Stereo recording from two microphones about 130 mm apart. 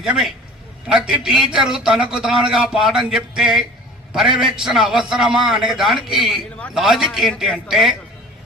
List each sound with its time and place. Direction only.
0.0 s a man's voice: 5° right (ahead or behind)